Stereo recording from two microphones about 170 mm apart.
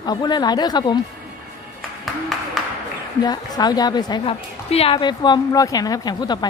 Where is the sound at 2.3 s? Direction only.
Centre (ahead or behind).